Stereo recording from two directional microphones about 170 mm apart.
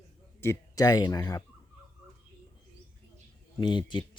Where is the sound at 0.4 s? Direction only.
20° left (ahead or behind).